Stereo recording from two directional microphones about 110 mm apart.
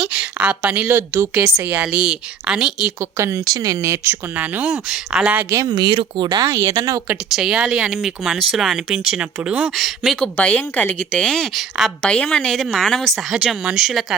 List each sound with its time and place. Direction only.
0.0 s speech: 10° right (ahead or behind)
3.0 s speech: 25° right (ahead or behind)
5.5 s speech: 40° right (ahead or behind)
6.4 s speech: 25° right (ahead or behind)
7.3 s speech: 5° right (ahead or behind)
9.6 s speech: centre (ahead or behind)
10.3 s a woman's voice: 15° left (ahead or behind); by 14.2 s centre (ahead or behind)